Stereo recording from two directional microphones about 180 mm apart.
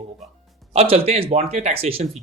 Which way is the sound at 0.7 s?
35° right (ahead or behind).